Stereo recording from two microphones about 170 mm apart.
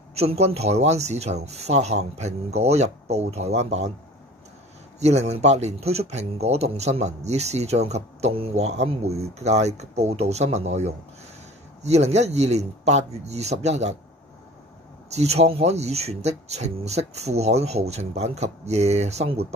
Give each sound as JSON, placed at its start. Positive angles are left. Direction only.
{"t": 0.1, "sound": "a man's voice", "side_deg": -35}
{"t": 5.0, "sound": "a man's voice", "side_deg": -40}
{"t": 15.1, "sound": "a man's voice", "side_deg": -40}